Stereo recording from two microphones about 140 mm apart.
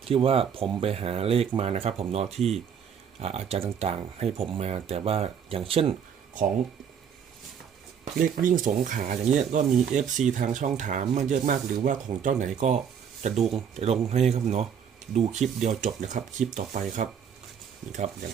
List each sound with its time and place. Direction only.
0.1 s speech: 40° right (ahead or behind)
8.2 s speech: 75° right (ahead or behind); by 18.3 s 55° right (ahead or behind)